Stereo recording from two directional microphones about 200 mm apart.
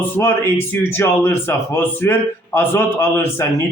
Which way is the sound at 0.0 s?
10° left (ahead or behind).